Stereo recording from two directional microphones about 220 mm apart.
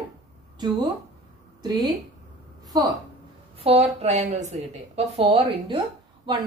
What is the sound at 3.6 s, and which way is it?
A woman's voice, 25° right (ahead or behind).